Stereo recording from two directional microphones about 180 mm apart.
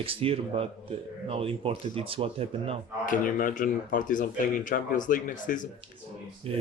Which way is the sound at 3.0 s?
50° left (ahead or behind).